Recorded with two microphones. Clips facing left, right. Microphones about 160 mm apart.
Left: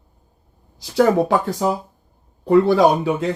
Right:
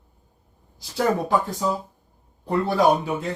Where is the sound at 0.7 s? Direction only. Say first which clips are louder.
Left 7 dB; 85° left.